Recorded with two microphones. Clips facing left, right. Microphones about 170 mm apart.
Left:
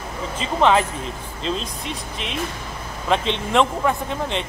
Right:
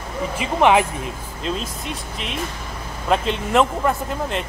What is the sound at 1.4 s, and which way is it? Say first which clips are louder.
Speech: even; 5° right (ahead or behind).